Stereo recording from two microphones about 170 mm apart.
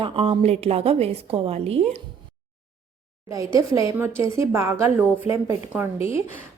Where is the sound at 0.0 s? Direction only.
30° right (ahead or behind).